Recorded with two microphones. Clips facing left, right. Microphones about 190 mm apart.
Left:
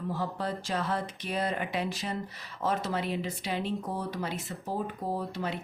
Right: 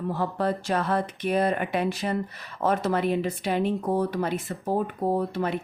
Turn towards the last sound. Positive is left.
turn(degrees=-55)  # may be behind; listen again after turning